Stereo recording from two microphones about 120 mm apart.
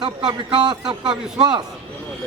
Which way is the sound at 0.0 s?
40° right (ahead or behind).